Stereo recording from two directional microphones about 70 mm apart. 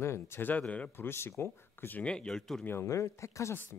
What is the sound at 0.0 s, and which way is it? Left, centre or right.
Speech, left.